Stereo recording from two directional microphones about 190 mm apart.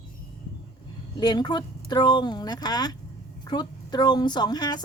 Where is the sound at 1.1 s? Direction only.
25° left (ahead or behind).